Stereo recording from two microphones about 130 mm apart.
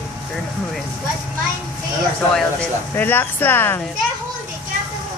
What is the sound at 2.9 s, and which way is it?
Speech, 15° left (ahead or behind).